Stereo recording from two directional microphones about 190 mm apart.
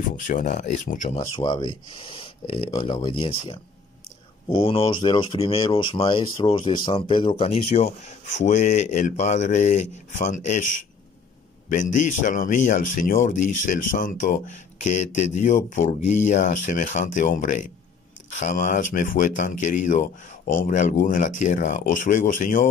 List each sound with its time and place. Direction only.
0.1 s speech: 45° left (ahead or behind)
1.4 s speech: 20° left (ahead or behind); by 10.6 s 40° left (ahead or behind)
11.7 s speech: 40° left (ahead or behind)